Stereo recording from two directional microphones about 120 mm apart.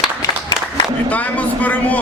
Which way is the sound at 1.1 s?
15° left (ahead or behind).